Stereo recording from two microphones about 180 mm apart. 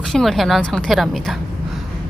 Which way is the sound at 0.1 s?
Centre (ahead or behind).